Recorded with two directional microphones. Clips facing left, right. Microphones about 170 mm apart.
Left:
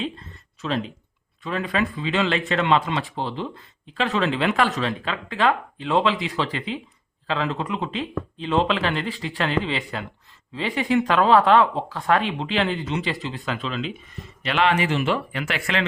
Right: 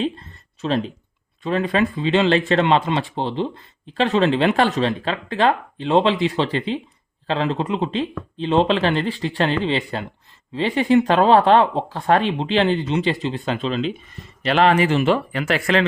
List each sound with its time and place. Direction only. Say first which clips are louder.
0.0 s a sound: right 6 dB; 35° right (ahead or behind)
1.5 s speech: right 5 dB; 30° right (ahead or behind)
14.4 s speech: right 5 dB; 40° right (ahead or behind)